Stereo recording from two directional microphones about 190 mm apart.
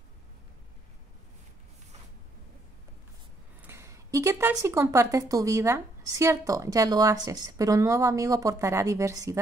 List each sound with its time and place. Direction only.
3.6 s a woman's voice: 15° right (ahead or behind)